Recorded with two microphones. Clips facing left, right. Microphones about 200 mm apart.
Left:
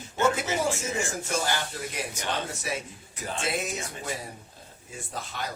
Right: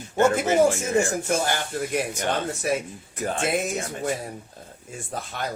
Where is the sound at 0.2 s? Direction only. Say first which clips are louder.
Right 7 dB; 55° right (ahead or behind).